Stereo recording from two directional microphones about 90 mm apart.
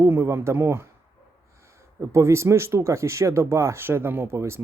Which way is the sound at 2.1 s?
30° right (ahead or behind).